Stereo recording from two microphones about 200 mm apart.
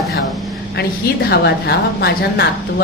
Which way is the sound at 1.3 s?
55° left (ahead or behind).